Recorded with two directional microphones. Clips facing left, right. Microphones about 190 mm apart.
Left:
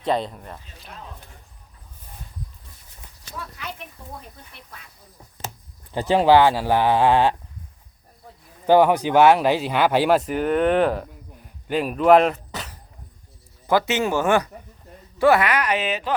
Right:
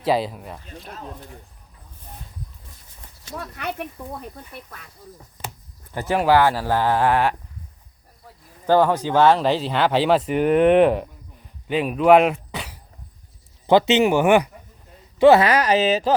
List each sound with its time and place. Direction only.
0.0 s speech: 5° right (ahead or behind)
3.3 s speech: 60° right (ahead or behind)
5.9 s speech: 25° left (ahead or behind)
8.6 s speech: 15° left (ahead or behind); by 12.8 s 10° right (ahead or behind)
13.7 s speech: 20° right (ahead or behind)
15.4 s speech: 35° right (ahead or behind)